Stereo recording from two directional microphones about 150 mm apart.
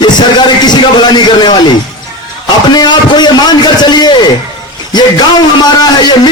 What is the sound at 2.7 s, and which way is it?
A man's voice, 30° left (ahead or behind).